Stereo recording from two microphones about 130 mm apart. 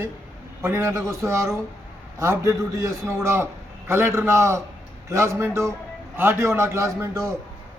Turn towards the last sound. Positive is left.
turn(degrees=-20)  # may be behind; listen again after turning